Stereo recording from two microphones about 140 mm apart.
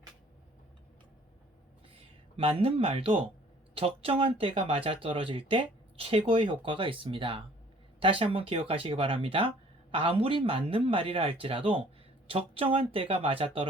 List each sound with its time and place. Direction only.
2.0 s speech: 45° right (ahead or behind)